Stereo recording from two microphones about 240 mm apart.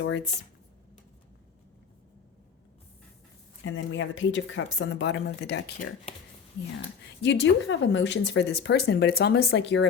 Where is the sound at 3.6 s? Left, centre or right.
Left.